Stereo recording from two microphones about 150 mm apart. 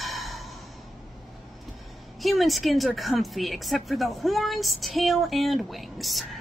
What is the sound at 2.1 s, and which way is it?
Speech, centre (ahead or behind).